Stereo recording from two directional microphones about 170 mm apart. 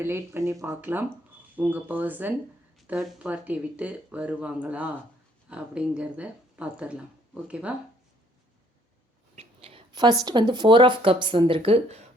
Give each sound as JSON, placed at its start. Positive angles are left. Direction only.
{"t": 0.0, "sound": "speech", "side_deg": -15}
{"t": 9.3, "sound": "a sound", "side_deg": -35}
{"t": 10.2, "sound": "speech", "side_deg": -25}